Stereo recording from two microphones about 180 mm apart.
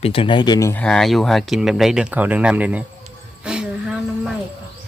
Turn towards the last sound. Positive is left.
turn(degrees=-5)  # may be behind; listen again after turning